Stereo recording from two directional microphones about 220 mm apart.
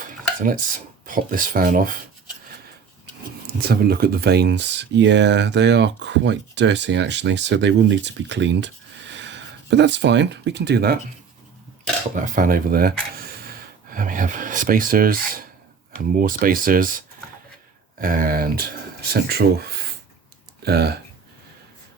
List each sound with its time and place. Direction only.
1.0 s speech: 40° right (ahead or behind)
3.4 s speech: 45° right (ahead or behind)
12.2 s speech: 40° right (ahead or behind)
18.0 s speech: 40° right (ahead or behind)
20.6 s speech: 45° right (ahead or behind)